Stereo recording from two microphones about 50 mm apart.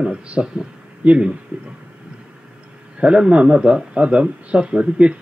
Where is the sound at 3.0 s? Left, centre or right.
Right.